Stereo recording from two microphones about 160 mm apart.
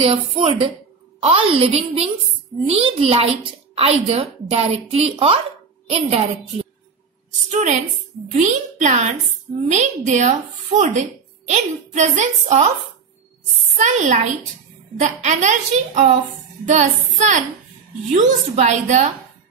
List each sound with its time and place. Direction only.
0.0 s a woman's voice: 35° right (ahead or behind)
7.5 s speech: 45° right (ahead or behind)
13.7 s speech: 50° right (ahead or behind)